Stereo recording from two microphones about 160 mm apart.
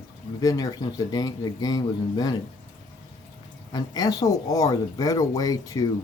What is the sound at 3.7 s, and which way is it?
Speech, 25° left (ahead or behind).